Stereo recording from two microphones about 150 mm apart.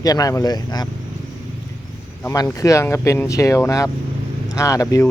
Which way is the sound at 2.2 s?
20° left (ahead or behind).